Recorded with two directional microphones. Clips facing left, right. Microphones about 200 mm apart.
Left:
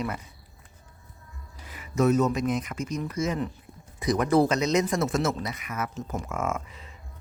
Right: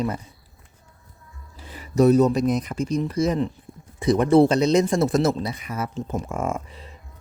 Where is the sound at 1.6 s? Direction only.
30° right (ahead or behind).